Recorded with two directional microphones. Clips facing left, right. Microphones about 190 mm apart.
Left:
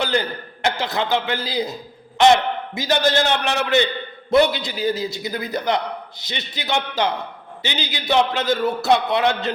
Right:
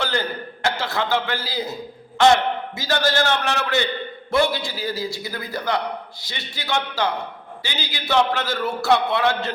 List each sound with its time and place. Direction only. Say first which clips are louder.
0.0 s a man's voice: left 3 dB; 15° left (ahead or behind)